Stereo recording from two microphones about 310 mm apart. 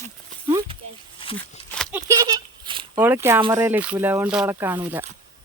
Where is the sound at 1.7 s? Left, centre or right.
Centre.